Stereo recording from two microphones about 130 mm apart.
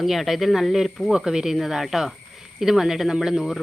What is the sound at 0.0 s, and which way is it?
Speech, centre (ahead or behind).